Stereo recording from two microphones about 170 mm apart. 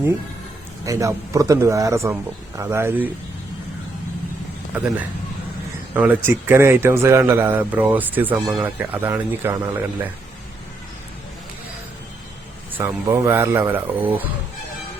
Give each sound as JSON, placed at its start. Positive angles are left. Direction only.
{"t": 0.9, "sound": "speech", "side_deg": -20}
{"t": 4.7, "sound": "speech", "side_deg": -10}
{"t": 12.7, "sound": "speech", "side_deg": -15}